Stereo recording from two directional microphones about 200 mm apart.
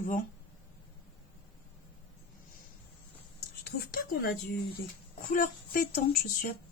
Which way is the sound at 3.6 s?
50° left (ahead or behind).